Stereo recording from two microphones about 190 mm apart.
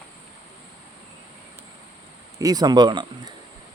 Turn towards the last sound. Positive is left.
turn(degrees=-25)  # may be behind; listen again after turning